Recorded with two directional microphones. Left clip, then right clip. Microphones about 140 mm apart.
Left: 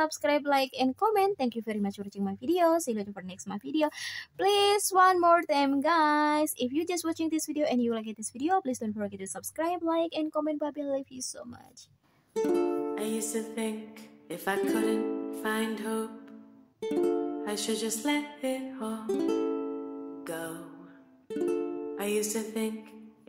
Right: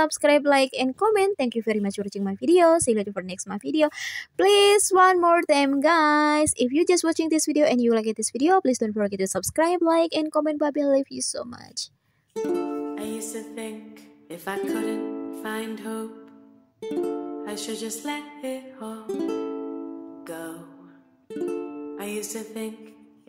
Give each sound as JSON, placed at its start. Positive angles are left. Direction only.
{"t": 0.0, "sound": "a woman's voice", "side_deg": -30}
{"t": 12.4, "sound": "music", "side_deg": 0}
{"t": 21.3, "sound": "speech", "side_deg": 0}